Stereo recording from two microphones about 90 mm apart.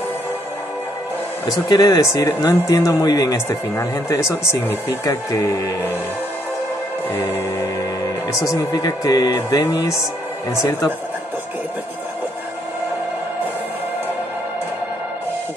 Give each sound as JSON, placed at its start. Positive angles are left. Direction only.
{"t": 1.7, "sound": "speech", "side_deg": 45}
{"t": 3.7, "sound": "speech", "side_deg": 35}
{"t": 7.6, "sound": "music", "side_deg": 45}
{"t": 8.5, "sound": "speech", "side_deg": 45}